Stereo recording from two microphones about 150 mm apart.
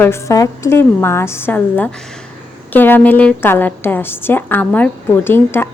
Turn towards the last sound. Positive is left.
turn(degrees=15)  # may be behind; listen again after turning